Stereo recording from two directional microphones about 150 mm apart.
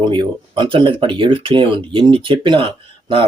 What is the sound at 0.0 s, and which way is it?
Speech, 30° right (ahead or behind).